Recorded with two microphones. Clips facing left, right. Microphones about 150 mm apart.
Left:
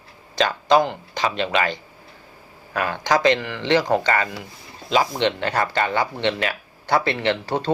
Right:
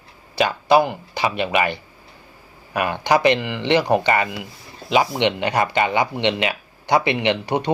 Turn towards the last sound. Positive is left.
turn(degrees=-15)  # may be behind; listen again after turning